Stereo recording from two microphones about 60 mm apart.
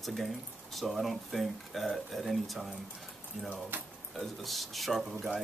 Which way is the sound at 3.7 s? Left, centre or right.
Right.